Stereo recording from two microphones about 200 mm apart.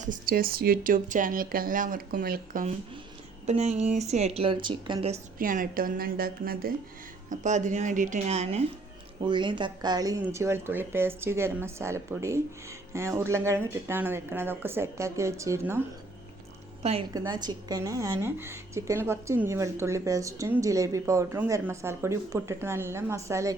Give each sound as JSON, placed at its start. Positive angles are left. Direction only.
{"t": 0.0, "sound": "speech", "side_deg": -45}
{"t": 3.4, "sound": "speech", "side_deg": -35}
{"t": 5.4, "sound": "a woman's voice", "side_deg": -45}
{"t": 17.2, "sound": "a woman's voice", "side_deg": -20}